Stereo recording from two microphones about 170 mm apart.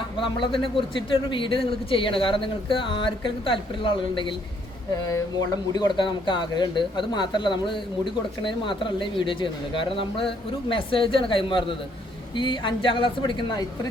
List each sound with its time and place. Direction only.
0.2 s speech: 30° left (ahead or behind)